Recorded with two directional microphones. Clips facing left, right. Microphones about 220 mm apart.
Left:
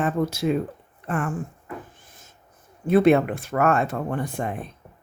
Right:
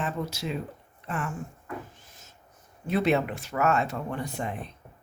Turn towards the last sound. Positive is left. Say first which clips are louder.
# left 5 dB
turn(degrees=50)  # may be behind; listen again after turning